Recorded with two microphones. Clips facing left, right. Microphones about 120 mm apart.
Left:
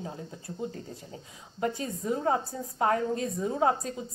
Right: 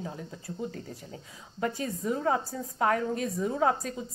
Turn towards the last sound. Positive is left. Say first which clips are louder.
# even
turn(degrees=25)  # may be behind; listen again after turning